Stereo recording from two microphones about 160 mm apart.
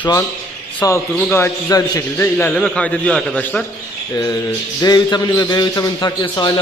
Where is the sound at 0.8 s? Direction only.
15° left (ahead or behind).